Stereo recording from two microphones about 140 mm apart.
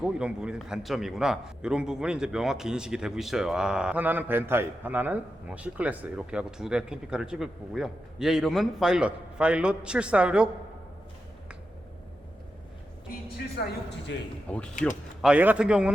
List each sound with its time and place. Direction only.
0.0 s a man's voice: 5° right (ahead or behind)
14.4 s speech: 10° left (ahead or behind)
15.2 s a man's voice: 10° right (ahead or behind)